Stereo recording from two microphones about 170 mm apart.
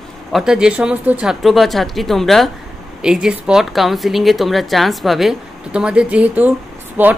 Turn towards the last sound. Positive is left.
turn(degrees=-10)  # may be behind; listen again after turning